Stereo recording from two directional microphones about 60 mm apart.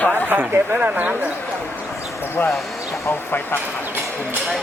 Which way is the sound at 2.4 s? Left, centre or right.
Left.